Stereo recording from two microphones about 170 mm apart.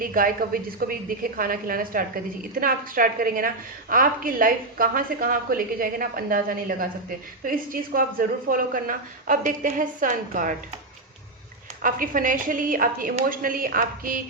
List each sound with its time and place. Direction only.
0.0 s a woman's voice: 55° right (ahead or behind)
11.8 s a woman's voice: 55° right (ahead or behind)